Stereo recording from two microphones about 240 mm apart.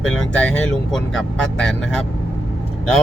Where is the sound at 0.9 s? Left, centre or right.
Centre.